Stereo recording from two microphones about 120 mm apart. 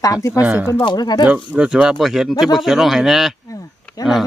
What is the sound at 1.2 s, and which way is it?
Speech, 10° right (ahead or behind).